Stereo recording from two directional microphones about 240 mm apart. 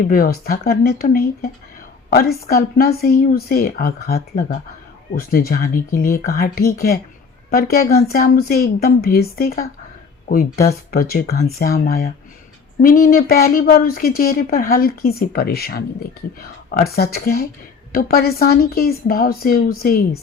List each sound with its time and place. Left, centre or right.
0.1 s speech: left
16.9 s speech: left